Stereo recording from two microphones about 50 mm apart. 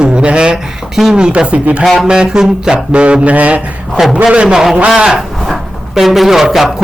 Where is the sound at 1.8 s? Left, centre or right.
Centre.